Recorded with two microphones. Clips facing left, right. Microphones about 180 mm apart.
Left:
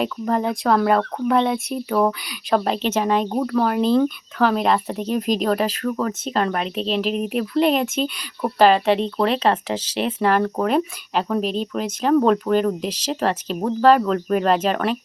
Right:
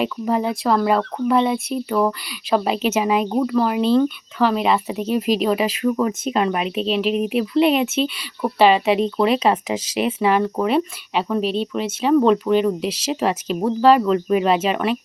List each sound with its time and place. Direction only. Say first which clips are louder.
0.0 s speech: right 1 dB; 5° right (ahead or behind)
11.4 s speech: right 2 dB; 40° left (ahead or behind)
11.7 s speech: even; centre (ahead or behind)